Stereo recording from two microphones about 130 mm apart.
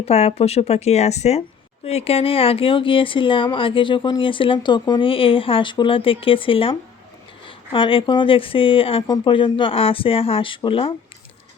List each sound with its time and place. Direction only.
0.0 s speech: 55° left (ahead or behind)